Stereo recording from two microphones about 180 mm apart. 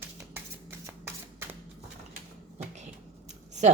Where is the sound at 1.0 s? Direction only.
10° right (ahead or behind).